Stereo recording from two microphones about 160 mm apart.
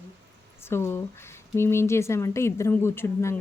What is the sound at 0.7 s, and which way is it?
Speech, 15° left (ahead or behind).